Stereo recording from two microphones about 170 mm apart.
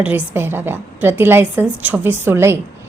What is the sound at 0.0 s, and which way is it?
A woman's voice, 10° right (ahead or behind).